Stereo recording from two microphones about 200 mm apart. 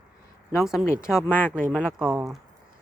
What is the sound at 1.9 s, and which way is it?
Speech, 5° right (ahead or behind).